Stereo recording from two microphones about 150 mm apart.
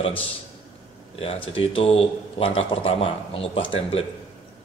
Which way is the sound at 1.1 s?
40° left (ahead or behind).